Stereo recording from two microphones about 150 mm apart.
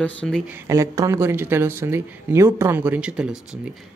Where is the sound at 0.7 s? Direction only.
20° right (ahead or behind).